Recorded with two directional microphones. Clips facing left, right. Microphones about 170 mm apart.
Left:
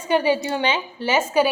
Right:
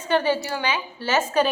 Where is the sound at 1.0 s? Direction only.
10° left (ahead or behind).